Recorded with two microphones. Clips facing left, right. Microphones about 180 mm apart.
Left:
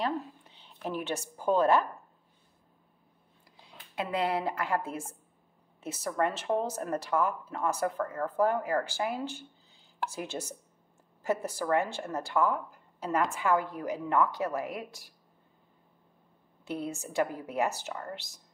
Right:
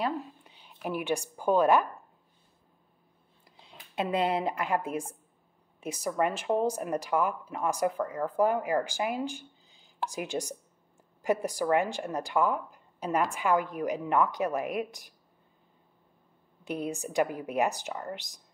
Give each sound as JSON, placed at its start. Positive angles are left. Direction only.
{"t": 0.0, "sound": "a woman's voice", "side_deg": -10}
{"t": 3.6, "sound": "speech", "side_deg": -25}
{"t": 16.6, "sound": "speech", "side_deg": -15}